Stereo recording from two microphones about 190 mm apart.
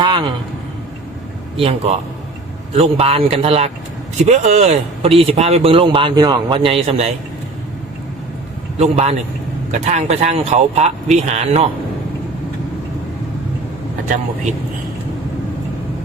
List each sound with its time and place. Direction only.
0.0 s a sound: 25° right (ahead or behind)
1.5 s speech: 30° right (ahead or behind)
8.8 s speech: 35° right (ahead or behind)